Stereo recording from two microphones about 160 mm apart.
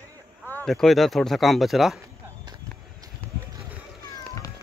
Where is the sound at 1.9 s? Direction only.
20° right (ahead or behind).